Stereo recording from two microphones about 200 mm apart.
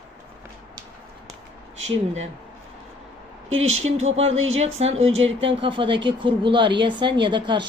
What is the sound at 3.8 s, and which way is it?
Speech, 35° right (ahead or behind).